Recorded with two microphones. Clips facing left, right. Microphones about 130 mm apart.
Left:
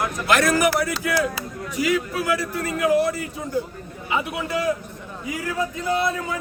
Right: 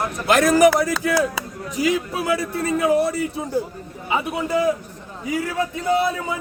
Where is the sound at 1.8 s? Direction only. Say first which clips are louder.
Right 1 dB; 25° right (ahead or behind).